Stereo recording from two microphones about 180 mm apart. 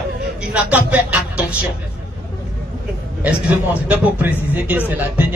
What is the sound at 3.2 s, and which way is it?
A man's voice, 10° right (ahead or behind).